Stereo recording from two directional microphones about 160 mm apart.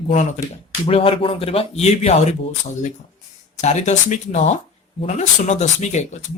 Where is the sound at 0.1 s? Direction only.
50° left (ahead or behind).